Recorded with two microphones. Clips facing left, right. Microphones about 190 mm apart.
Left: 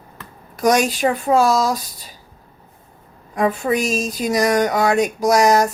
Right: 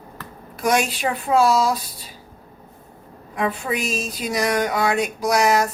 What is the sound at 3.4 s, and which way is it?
Speech, 45° left (ahead or behind).